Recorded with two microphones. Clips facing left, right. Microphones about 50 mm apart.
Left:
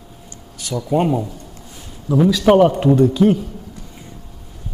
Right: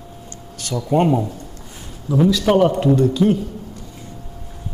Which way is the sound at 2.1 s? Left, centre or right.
Centre.